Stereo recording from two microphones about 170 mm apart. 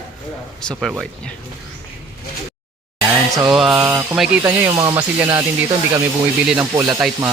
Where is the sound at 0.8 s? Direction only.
5° right (ahead or behind).